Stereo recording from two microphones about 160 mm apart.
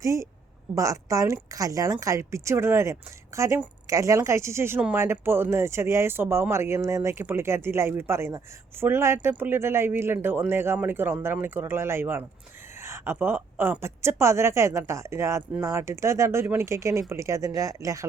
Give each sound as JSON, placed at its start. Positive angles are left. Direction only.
{"t": 0.0, "sound": "speech", "side_deg": -20}